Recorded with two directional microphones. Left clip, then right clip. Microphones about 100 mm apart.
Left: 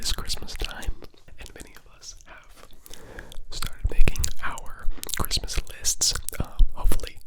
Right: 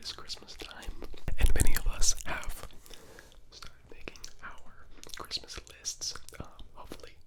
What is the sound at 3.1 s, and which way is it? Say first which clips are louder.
Whispering: left 11 dB; 55° left (ahead or behind).